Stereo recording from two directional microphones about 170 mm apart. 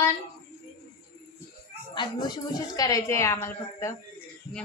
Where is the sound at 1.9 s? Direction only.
25° left (ahead or behind).